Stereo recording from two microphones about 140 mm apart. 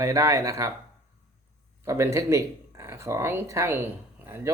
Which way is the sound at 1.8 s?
20° right (ahead or behind).